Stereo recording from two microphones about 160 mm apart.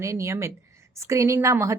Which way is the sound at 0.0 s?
15° right (ahead or behind).